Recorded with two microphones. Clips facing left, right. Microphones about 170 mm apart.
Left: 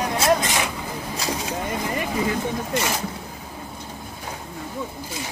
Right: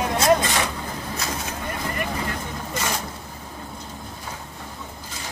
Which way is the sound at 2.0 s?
10° left (ahead or behind).